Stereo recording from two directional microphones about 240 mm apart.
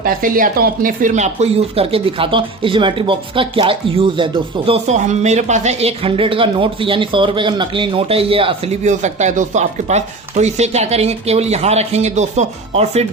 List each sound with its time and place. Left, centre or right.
0.0 s speech: right